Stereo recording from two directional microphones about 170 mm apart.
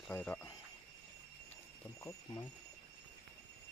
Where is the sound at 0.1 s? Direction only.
10° left (ahead or behind).